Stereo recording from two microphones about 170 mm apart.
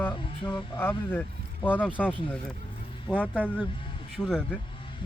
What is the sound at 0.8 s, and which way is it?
Speech, 10° left (ahead or behind).